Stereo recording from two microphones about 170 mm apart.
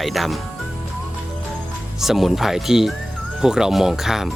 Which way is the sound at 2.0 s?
Centre (ahead or behind).